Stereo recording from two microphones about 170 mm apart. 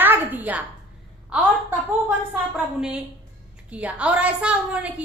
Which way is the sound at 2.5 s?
5° right (ahead or behind).